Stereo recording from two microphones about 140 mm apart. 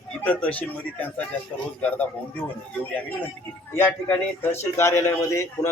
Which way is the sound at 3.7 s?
15° left (ahead or behind).